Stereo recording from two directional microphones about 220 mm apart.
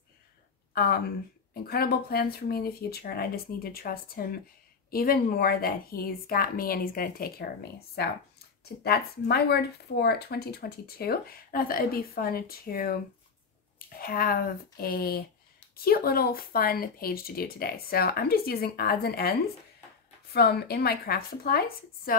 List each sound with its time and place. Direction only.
0.7 s speech: 45° left (ahead or behind)
20.3 s speech: 45° left (ahead or behind)